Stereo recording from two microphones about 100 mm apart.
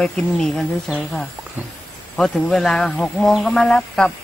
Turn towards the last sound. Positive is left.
turn(degrees=5)  # may be behind; listen again after turning